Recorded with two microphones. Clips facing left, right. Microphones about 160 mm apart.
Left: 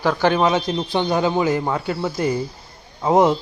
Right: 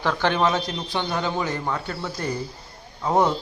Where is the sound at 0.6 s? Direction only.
25° left (ahead or behind).